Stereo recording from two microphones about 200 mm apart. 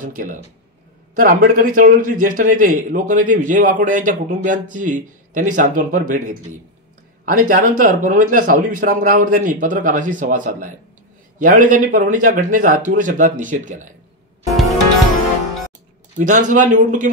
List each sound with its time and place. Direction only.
0.0 s a man's voice: 40° right (ahead or behind)
16.2 s a man's voice: 40° right (ahead or behind)